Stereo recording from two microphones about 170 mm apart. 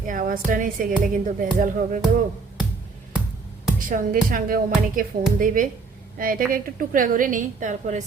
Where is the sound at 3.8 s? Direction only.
50° right (ahead or behind).